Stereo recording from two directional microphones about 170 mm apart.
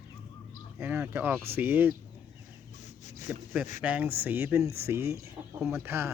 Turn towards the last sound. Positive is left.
turn(degrees=-15)  # may be behind; listen again after turning